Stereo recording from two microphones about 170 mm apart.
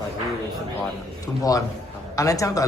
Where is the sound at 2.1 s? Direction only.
20° left (ahead or behind).